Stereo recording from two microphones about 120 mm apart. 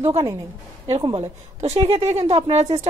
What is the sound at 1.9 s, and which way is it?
Speech, 60° right (ahead or behind).